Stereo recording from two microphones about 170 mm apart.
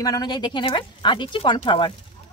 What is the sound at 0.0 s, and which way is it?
Speech, 20° left (ahead or behind).